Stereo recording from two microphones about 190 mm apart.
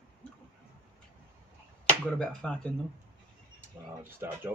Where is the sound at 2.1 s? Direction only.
5° left (ahead or behind).